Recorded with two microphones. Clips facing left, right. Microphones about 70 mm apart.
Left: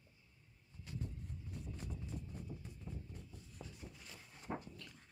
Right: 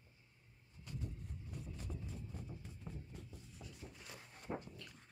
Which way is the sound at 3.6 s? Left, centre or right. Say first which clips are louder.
Left 3 dB; left.